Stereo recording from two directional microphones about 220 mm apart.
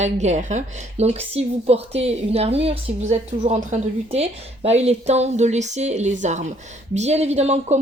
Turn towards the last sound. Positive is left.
turn(degrees=-30)  # may be behind; listen again after turning